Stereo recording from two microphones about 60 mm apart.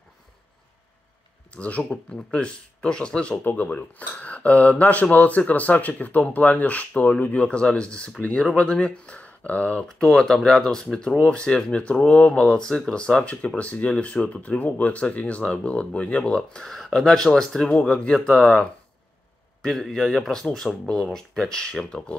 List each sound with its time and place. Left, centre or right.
1.5 s speech: left
3.4 s speech: left
7.4 s speech: centre
9.8 s speech: centre